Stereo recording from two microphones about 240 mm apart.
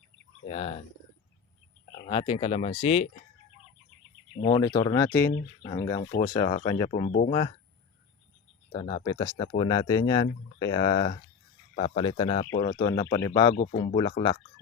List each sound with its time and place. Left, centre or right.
0.4 s speech: left
2.0 s speech: left
4.4 s speech: centre
7.1 s speech: left
8.7 s speech: centre